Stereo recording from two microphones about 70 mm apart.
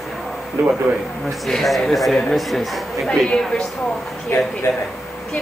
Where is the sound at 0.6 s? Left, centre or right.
Right.